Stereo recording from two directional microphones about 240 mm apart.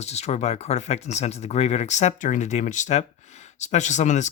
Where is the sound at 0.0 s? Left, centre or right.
Left.